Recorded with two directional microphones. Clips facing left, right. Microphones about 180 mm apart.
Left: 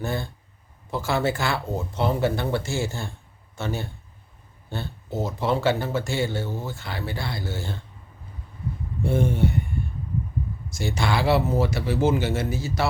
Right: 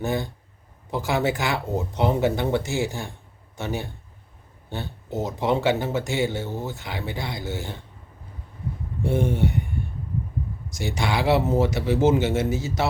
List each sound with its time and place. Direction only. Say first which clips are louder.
0.0 s speech: right 3 dB; 20° right (ahead or behind)
9.0 s speech: even; 15° right (ahead or behind)
10.7 s speech: left 1 dB; 15° right (ahead or behind)